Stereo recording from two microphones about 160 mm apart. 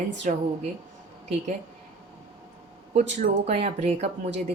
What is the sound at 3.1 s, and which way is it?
Speech, 45° right (ahead or behind).